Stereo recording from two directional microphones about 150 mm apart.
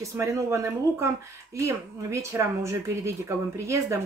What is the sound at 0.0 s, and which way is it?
Speech, 20° right (ahead or behind).